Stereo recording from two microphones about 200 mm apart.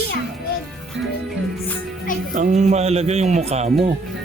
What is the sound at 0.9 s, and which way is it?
Speech, 65° right (ahead or behind).